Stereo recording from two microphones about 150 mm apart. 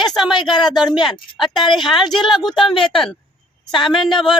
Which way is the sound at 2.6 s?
35° left (ahead or behind).